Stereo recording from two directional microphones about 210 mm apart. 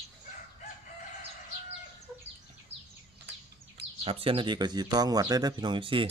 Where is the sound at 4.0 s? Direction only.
25° right (ahead or behind).